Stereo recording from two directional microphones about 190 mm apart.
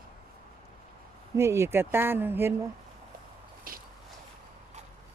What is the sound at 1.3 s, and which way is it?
Speech, 15° right (ahead or behind).